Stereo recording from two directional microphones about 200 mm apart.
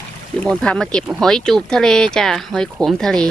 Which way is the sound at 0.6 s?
5° left (ahead or behind).